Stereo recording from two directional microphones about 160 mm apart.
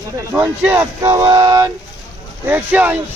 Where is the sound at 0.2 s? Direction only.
20° right (ahead or behind).